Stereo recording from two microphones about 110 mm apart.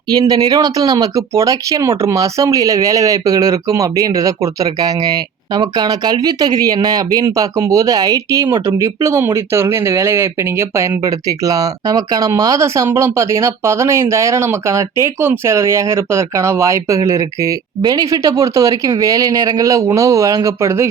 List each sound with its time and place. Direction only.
0.1 s speech: 40° right (ahead or behind)